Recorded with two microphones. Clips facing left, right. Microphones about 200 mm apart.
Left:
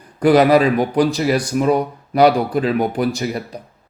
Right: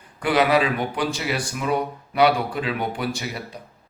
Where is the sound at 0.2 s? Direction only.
40° left (ahead or behind).